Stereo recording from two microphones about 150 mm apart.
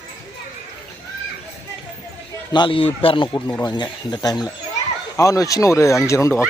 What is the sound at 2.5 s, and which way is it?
A man's voice, 35° left (ahead or behind).